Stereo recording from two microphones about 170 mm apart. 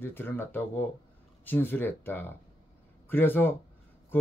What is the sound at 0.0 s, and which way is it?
Speech, 10° left (ahead or behind).